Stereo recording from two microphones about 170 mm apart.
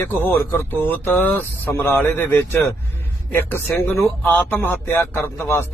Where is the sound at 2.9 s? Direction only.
15° left (ahead or behind).